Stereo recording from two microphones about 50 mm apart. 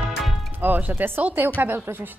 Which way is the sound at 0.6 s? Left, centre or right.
Right.